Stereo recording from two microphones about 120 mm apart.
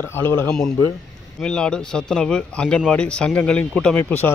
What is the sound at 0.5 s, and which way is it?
A man's voice, 5° left (ahead or behind).